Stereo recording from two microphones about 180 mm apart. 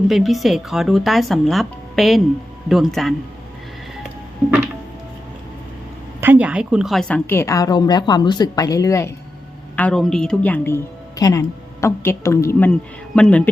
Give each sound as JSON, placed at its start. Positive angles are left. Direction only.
{"t": 0.1, "sound": "speech", "side_deg": 0}
{"t": 6.1, "sound": "a woman's voice", "side_deg": -10}
{"t": 9.7, "sound": "a woman's voice", "side_deg": 5}